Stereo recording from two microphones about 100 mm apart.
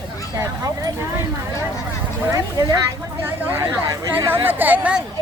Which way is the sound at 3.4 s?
20° right (ahead or behind).